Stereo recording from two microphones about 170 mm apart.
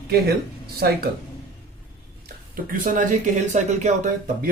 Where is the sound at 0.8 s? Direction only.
65° right (ahead or behind).